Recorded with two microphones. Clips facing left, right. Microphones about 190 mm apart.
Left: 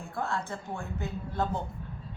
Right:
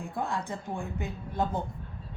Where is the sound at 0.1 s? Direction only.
15° right (ahead or behind).